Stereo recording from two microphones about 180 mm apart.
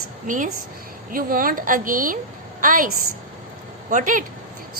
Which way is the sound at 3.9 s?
45° right (ahead or behind).